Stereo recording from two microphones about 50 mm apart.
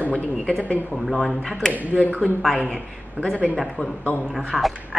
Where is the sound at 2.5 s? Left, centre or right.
Centre.